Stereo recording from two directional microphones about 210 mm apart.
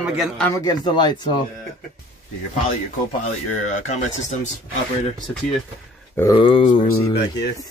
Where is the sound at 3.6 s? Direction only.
35° left (ahead or behind).